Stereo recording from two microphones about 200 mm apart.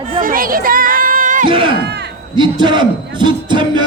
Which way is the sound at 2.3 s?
25° right (ahead or behind).